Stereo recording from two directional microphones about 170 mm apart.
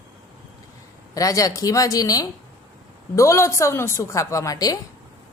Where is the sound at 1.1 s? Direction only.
20° left (ahead or behind).